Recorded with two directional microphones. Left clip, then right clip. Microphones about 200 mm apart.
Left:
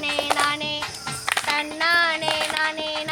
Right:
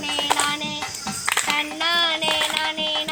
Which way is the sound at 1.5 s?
5° right (ahead or behind).